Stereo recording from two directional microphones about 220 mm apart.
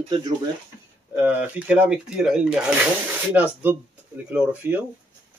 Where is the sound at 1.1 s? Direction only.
5° right (ahead or behind).